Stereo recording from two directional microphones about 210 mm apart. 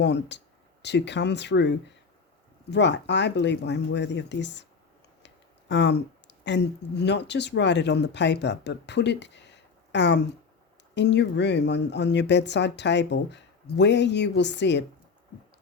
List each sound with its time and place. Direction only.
0.0 s speech: 55° left (ahead or behind)